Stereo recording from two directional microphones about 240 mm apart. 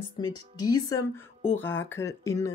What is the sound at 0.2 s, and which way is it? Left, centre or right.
Speech, centre.